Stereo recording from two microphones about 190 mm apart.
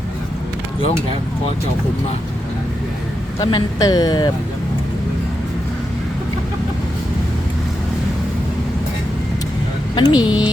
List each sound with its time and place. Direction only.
3.4 s speech: 20° left (ahead or behind)
9.9 s a woman's voice: 25° left (ahead or behind)
10.2 s speech: 5° right (ahead or behind)